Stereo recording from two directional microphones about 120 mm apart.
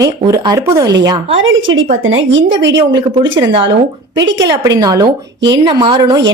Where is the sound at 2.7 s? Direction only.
30° right (ahead or behind).